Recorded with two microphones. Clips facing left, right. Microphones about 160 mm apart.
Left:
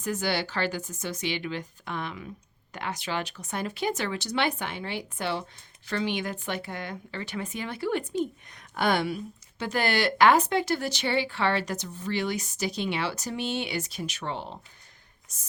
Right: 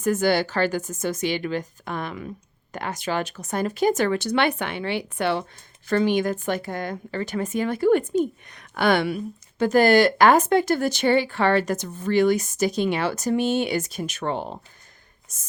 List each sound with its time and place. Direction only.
0.0 s speech: 50° right (ahead or behind)
5.9 s speech: 45° right (ahead or behind)